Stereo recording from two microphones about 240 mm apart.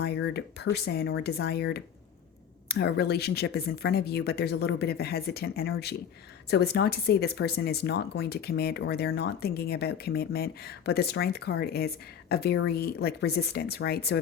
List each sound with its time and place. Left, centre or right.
0.0 s speech: left